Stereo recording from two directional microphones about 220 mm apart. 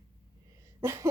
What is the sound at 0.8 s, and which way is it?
Speech, 15° right (ahead or behind).